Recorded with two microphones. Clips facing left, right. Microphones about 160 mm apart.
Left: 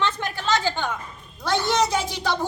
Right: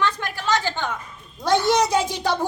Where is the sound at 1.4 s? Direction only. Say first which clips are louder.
Right 3 dB; 15° right (ahead or behind).